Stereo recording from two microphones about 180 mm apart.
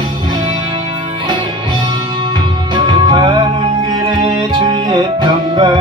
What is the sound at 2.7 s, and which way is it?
Music, 25° right (ahead or behind).